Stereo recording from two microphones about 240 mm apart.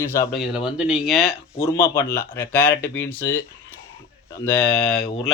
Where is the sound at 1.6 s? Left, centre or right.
Centre.